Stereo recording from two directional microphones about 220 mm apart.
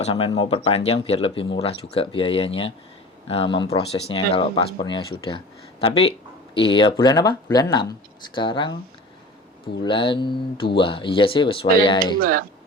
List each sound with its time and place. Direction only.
0.0 s speech: 25° left (ahead or behind)
9.8 s speech: 20° left (ahead or behind)
12.2 s speech: 40° right (ahead or behind)